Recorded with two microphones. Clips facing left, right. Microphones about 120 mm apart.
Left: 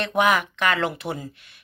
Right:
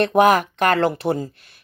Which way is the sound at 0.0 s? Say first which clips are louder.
Right 6 dB; 40° right (ahead or behind).